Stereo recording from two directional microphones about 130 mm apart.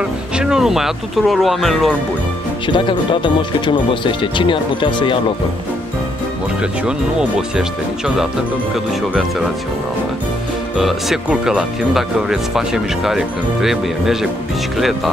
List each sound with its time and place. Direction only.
0.4 s speech: 5° right (ahead or behind)
2.6 s speech: 40° left (ahead or behind)
6.6 s speech: 5° right (ahead or behind)
10.8 s speech: centre (ahead or behind)